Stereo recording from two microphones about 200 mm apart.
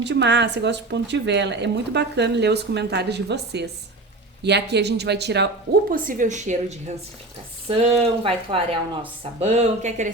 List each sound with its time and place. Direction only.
0.0 s speech: 60° right (ahead or behind)
5.9 s a woman's voice: 40° right (ahead or behind)